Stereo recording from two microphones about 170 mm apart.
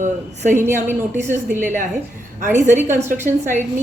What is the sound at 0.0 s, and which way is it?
Speech, 45° right (ahead or behind).